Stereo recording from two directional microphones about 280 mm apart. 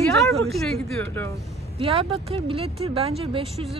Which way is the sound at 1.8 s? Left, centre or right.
Right.